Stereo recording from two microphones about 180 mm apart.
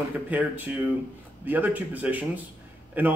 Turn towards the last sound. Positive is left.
turn(degrees=-10)  # may be behind; listen again after turning